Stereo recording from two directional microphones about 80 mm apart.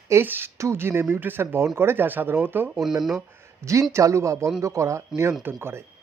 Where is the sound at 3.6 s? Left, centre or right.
Right.